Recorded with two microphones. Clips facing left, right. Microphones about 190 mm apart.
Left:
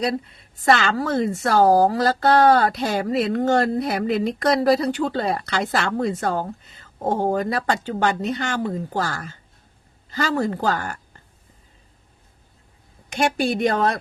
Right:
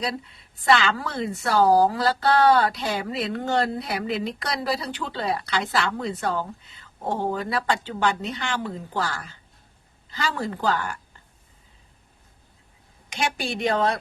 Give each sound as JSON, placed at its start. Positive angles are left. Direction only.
{"t": 0.0, "sound": "a woman's voice", "side_deg": 45}
{"t": 13.1, "sound": "a woman's voice", "side_deg": 45}